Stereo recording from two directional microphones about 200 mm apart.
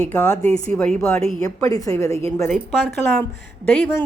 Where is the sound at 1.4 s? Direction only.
20° left (ahead or behind).